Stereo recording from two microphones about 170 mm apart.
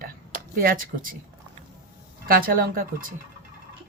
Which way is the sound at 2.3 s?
60° right (ahead or behind).